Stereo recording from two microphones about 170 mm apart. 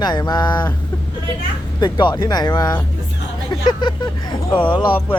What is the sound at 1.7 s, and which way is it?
Speech, 25° left (ahead or behind).